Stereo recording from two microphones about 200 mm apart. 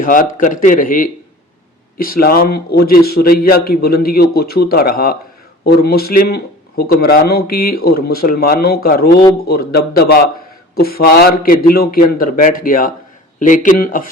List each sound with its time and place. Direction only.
0.0 s a man's voice: 45° left (ahead or behind)